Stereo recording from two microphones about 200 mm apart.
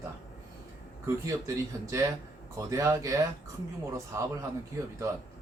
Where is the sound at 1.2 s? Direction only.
15° right (ahead or behind).